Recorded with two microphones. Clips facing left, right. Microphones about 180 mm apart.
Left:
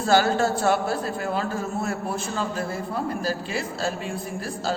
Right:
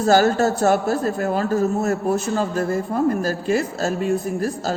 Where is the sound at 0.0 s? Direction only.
45° right (ahead or behind).